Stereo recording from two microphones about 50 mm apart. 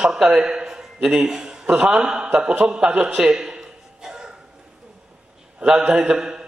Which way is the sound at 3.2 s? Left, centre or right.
Centre.